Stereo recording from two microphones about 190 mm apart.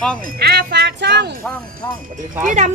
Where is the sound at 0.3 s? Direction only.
60° right (ahead or behind).